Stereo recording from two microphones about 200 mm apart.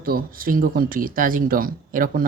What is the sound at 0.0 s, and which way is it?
Speech, 45° right (ahead or behind).